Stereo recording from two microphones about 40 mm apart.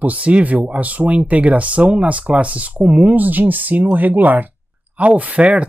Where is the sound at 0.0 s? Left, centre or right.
Right.